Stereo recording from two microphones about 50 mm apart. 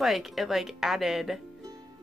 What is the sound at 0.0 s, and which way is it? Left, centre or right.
Speech, centre.